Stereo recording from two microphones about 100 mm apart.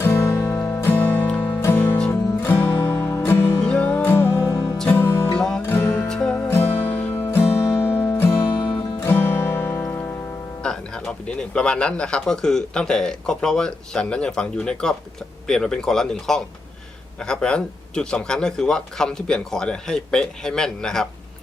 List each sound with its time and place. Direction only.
0.0 s music: 25° left (ahead or behind)
3.6 s music: 10° left (ahead or behind)
5.4 s music: 10° left (ahead or behind)
5.6 s music: 20° left (ahead or behind)
6.1 s music: 5° left (ahead or behind)
6.5 s music: 25° left (ahead or behind)
10.6 s speech: 5° left (ahead or behind)